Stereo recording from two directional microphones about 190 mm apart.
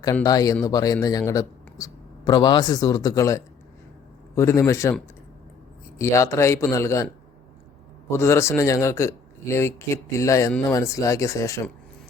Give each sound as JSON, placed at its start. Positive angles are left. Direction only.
{"t": 0.0, "sound": "speech", "side_deg": 20}
{"t": 6.0, "sound": "speech", "side_deg": 15}
{"t": 8.1, "sound": "speech", "side_deg": 15}